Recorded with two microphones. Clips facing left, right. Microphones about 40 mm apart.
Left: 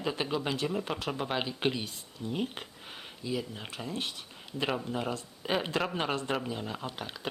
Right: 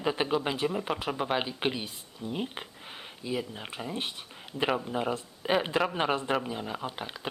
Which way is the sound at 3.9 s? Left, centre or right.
Right.